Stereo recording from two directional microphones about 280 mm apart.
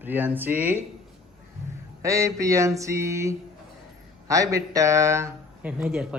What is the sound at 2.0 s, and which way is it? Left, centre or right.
Speech, centre.